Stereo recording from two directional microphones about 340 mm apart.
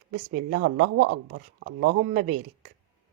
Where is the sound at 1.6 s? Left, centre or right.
Right.